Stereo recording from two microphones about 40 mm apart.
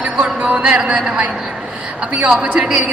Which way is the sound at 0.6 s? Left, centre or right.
Right.